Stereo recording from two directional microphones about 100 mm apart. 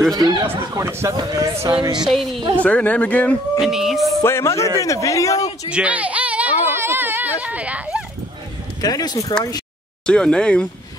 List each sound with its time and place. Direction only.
0.1 s speech: 40° right (ahead or behind)
0.8 s speech: 25° right (ahead or behind)
1.1 s speech: 35° right (ahead or behind)
1.7 s music: 50° right (ahead or behind)
2.0 s a woman's voice: centre (ahead or behind)
2.6 s speech: 15° left (ahead or behind)
3.5 s a woman's voice: 5° right (ahead or behind)
4.2 s a man's voice: 30° left (ahead or behind)
5.7 s a sound: 10° right (ahead or behind)
8.8 s a man's voice: 40° left (ahead or behind)
10.0 s speech: 10° left (ahead or behind)